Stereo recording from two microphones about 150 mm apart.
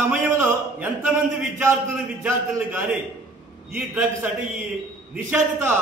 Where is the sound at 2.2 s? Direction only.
10° right (ahead or behind).